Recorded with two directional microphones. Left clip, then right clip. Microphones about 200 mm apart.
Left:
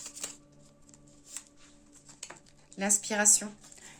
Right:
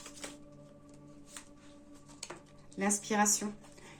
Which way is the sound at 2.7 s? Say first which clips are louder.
Left 1 dB; 45° left (ahead or behind).